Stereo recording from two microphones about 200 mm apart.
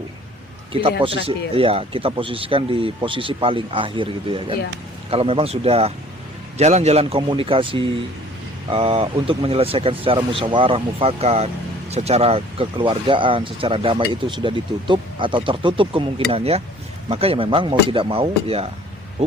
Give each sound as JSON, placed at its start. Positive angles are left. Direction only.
{"t": 0.7, "sound": "speech", "side_deg": -25}